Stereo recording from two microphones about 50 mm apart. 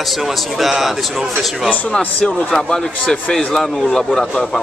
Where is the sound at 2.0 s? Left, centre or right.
Left.